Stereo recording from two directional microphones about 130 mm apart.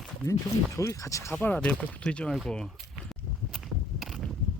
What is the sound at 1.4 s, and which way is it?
Speech, 15° left (ahead or behind).